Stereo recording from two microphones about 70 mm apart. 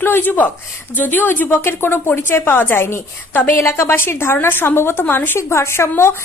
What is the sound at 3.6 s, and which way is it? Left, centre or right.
A woman's voice, left.